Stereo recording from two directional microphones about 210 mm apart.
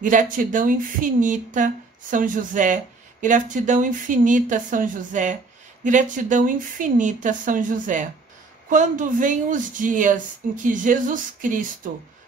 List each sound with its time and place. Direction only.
0.0 s speech: 40° right (ahead or behind)